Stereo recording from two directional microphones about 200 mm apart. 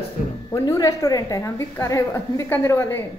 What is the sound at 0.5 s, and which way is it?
A woman's voice, 15° left (ahead or behind).